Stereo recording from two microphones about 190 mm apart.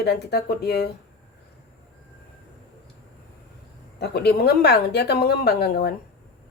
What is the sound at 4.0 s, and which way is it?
Speech, 55° left (ahead or behind).